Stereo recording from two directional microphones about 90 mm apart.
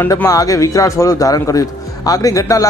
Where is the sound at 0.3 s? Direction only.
40° left (ahead or behind).